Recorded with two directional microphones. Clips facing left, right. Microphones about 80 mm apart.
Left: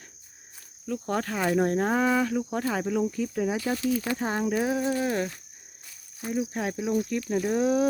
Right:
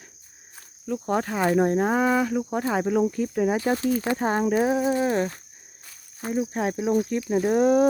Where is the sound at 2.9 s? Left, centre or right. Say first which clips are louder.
Right 4 dB; right.